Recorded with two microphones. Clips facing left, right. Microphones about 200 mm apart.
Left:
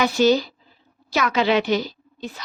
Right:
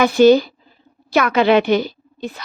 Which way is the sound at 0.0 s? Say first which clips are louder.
Right 7 dB; 55° right (ahead or behind).